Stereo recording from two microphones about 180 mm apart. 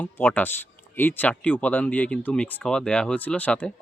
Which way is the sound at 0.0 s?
10° left (ahead or behind).